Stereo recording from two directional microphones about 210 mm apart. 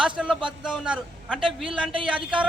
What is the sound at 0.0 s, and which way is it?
A man's voice, centre (ahead or behind).